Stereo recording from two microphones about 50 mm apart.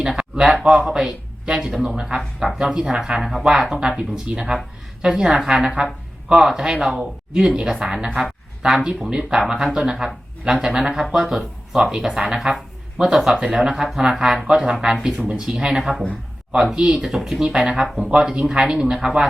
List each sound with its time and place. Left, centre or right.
0.0 s a man's voice: centre
5.6 s a sound: centre
6.3 s speech: centre
15.8 s speech: centre
16.7 s speech: centre
17.2 s speech: centre
17.4 s speech: centre